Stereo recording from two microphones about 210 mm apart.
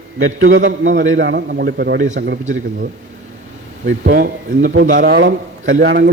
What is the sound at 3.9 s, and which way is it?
A man's voice, 50° right (ahead or behind).